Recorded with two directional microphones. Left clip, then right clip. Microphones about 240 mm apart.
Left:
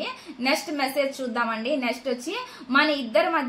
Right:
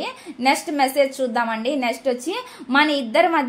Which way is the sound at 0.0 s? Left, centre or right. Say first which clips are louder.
Right 6 dB; right.